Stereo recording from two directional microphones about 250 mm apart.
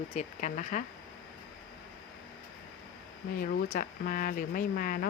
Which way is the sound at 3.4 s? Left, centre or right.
Left.